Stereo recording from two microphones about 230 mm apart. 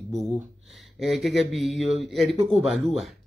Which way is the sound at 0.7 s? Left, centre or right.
Centre.